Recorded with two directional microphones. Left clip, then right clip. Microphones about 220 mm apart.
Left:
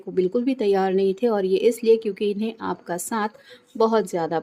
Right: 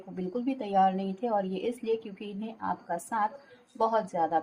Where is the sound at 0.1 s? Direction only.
45° left (ahead or behind).